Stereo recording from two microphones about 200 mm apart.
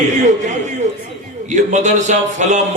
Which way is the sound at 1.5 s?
35° right (ahead or behind).